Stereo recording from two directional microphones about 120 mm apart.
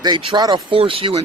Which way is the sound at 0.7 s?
50° right (ahead or behind).